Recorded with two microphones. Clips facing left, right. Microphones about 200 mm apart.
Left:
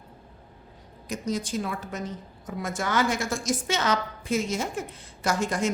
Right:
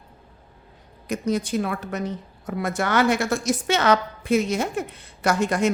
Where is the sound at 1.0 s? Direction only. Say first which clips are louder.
Right 5 dB; 60° right (ahead or behind).